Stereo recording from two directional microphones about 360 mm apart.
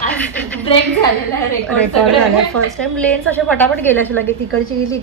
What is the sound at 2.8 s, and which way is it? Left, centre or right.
A woman's voice, centre.